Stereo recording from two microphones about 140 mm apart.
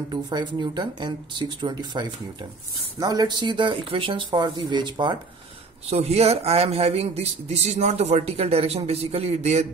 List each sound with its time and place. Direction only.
0.1 s speech: 35° right (ahead or behind)
5.9 s a man's voice: 50° right (ahead or behind)